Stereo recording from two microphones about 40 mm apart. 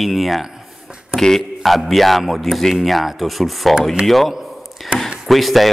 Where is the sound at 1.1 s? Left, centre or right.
Centre.